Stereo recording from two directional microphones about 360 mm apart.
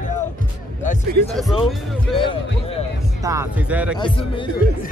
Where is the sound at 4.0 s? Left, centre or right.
Centre.